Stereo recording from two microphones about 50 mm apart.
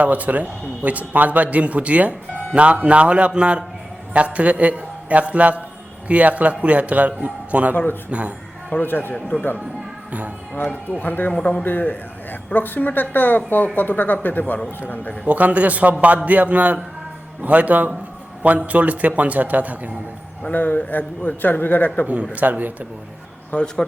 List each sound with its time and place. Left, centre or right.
0.0 s a man's voice: right
8.8 s a man's voice: left
10.1 s speech: right
10.5 s speech: left
11.0 s a man's voice: left
15.3 s a man's voice: right
20.5 s a man's voice: left
22.0 s a man's voice: right
23.5 s a man's voice: left